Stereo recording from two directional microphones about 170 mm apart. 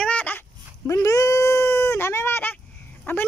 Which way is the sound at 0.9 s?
20° left (ahead or behind).